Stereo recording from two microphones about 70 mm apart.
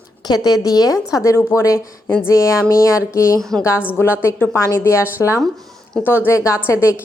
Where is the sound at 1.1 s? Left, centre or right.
Left.